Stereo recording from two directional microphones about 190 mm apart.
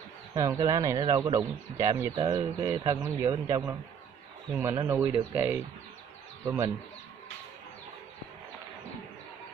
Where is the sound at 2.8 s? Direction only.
15° right (ahead or behind).